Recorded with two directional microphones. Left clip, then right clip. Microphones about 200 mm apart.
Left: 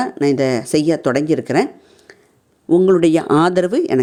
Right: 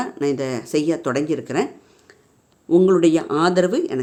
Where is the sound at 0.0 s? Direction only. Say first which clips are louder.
Left 6 dB; 25° left (ahead or behind).